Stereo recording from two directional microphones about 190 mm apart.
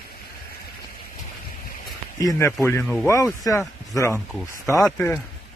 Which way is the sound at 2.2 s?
15° left (ahead or behind).